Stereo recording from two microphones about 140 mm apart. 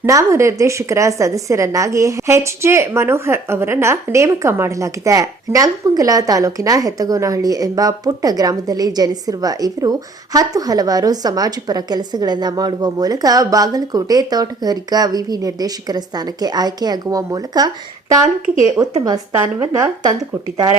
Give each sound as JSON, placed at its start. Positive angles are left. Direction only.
{"t": 0.0, "sound": "a woman's voice", "side_deg": -20}
{"t": 18.8, "sound": "a woman's voice", "side_deg": -30}